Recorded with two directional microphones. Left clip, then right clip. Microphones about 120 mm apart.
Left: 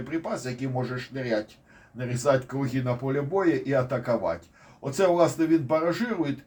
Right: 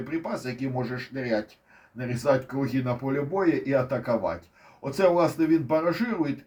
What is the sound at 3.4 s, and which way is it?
Speech, 15° left (ahead or behind).